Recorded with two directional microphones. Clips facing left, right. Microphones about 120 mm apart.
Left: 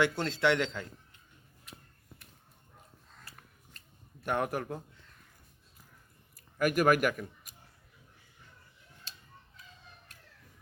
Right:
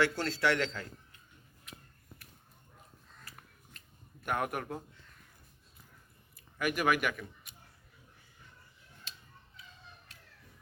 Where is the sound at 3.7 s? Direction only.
30° left (ahead or behind).